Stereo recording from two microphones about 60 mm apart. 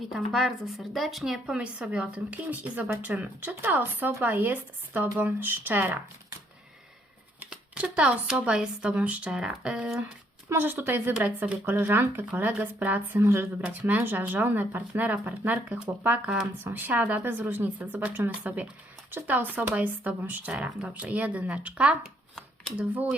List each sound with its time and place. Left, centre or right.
0.0 s speech: centre
1.2 s a woman's voice: centre; by 6.0 s right
7.5 s speech: centre
9.3 s speech: centre
10.5 s a woman's voice: right
13.1 s speech: right
13.7 s a woman's voice: right
15.5 s speech: right
16.0 s a woman's voice: right